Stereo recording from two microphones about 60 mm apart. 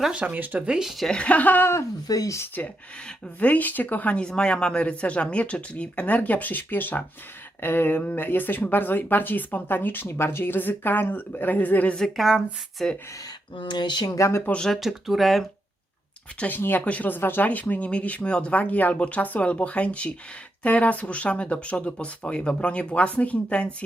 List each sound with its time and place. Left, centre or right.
0.1 s speech: right
0.8 s speech: centre
1.1 s speech: left
1.6 s speech: left
2.0 s speech: left
3.4 s speech: left
12.1 s speech: centre
12.8 s speech: centre
14.0 s speech: left
14.8 s speech: centre
16.4 s speech: left